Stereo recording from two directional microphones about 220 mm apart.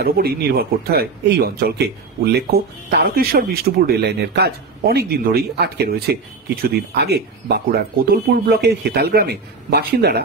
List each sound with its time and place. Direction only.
0.0 s speech: 45° right (ahead or behind)